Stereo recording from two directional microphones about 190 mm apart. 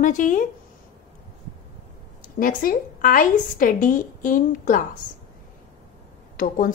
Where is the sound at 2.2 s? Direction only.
45° left (ahead or behind).